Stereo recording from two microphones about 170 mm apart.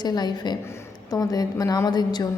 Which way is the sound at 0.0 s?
25° left (ahead or behind).